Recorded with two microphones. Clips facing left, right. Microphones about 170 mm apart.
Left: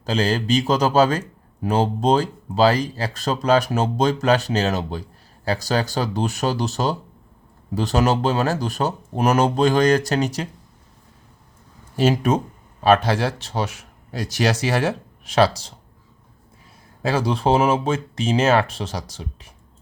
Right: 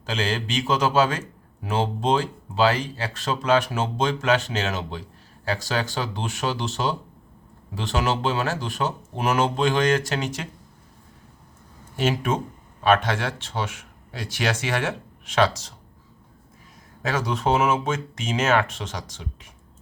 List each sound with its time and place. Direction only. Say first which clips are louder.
0.0 s speech: left 5 dB; 40° left (ahead or behind)
11.9 s speech: left 5 dB; 35° left (ahead or behind)
17.0 s speech: left 4 dB; 30° left (ahead or behind)